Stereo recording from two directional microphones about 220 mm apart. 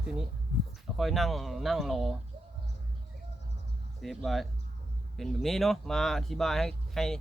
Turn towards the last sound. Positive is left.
turn(degrees=0)  # may be behind; listen again after turning